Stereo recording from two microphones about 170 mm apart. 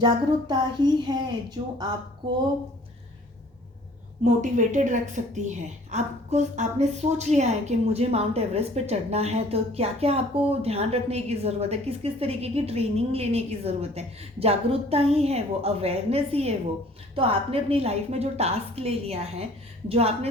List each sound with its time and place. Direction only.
0.0 s a woman's voice: 25° right (ahead or behind)
4.2 s a woman's voice: 45° right (ahead or behind)